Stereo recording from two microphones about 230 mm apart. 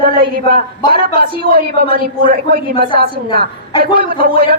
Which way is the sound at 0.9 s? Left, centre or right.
Right.